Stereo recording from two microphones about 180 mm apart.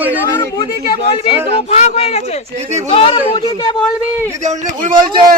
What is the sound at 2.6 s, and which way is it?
Speech, 40° right (ahead or behind).